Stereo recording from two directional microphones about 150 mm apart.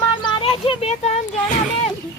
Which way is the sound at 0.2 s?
35° left (ahead or behind).